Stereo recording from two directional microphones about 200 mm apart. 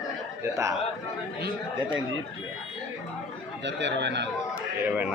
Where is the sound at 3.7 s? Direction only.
65° right (ahead or behind).